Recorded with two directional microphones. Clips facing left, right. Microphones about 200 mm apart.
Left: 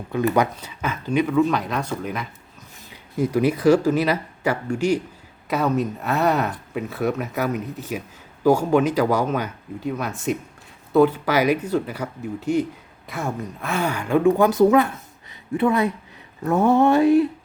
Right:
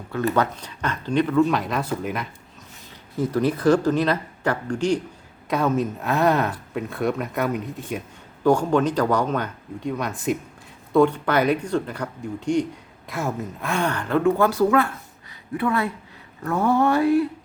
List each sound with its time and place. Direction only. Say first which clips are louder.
0.1 s speech: left 2 dB; 15° left (ahead or behind)
3.2 s speech: left 2 dB; 10° left (ahead or behind)
16.4 s a sound: left 3 dB; 20° left (ahead or behind)